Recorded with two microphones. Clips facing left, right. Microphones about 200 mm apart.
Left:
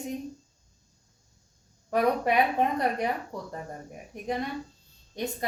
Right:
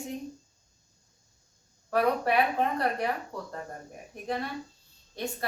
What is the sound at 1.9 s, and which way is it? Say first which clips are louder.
Speech: left 1 dB; 15° left (ahead or behind).